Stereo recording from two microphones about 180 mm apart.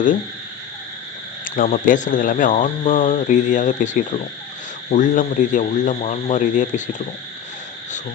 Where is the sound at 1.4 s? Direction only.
50° left (ahead or behind).